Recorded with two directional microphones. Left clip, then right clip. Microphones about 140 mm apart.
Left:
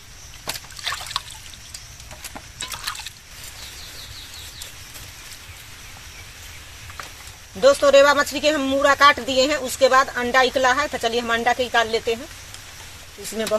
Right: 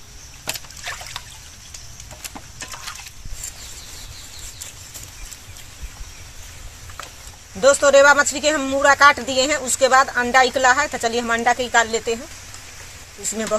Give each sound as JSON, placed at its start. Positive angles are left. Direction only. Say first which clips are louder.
{"t": 7.6, "sound": "speech", "louder": "right 1 dB", "side_deg": 5}
{"t": 13.2, "sound": "speech", "louder": "even", "side_deg": 15}